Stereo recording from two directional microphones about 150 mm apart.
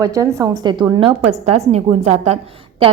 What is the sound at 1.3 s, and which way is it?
A woman's voice, 45° right (ahead or behind).